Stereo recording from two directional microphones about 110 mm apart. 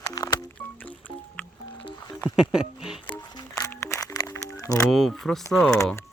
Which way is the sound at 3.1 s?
40° left (ahead or behind).